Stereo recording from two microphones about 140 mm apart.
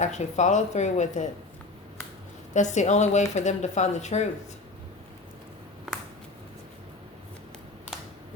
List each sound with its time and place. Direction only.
0.0 s a woman's voice: 55° left (ahead or behind)
2.5 s a woman's voice: 60° left (ahead or behind)